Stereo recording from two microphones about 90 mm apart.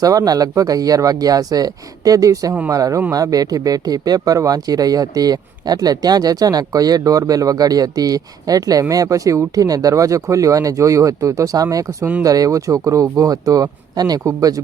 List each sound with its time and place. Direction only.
0.0 s a man's voice: 40° right (ahead or behind)